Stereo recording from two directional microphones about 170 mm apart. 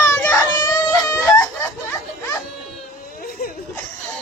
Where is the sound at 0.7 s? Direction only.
20° left (ahead or behind).